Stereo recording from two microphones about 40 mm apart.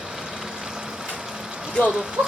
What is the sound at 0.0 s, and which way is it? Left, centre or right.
Vehicle, centre.